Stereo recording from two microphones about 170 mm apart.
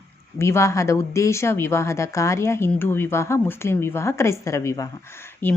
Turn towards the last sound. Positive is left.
turn(degrees=10)  # may be behind; listen again after turning